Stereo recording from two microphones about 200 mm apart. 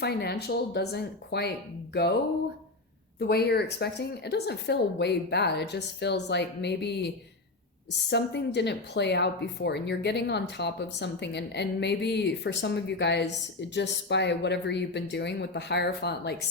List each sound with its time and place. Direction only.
0.0 s speech: 55° left (ahead or behind)
3.2 s speech: 55° left (ahead or behind)
8.1 s speech: 60° left (ahead or behind)